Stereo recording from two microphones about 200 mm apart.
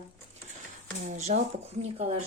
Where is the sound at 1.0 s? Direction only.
35° right (ahead or behind).